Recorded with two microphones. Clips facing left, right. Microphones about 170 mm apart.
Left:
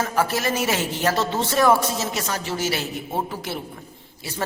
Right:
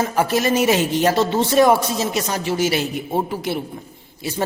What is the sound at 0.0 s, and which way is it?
A man's voice, 20° right (ahead or behind).